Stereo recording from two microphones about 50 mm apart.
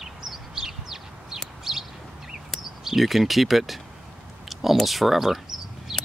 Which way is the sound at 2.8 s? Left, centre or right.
Centre.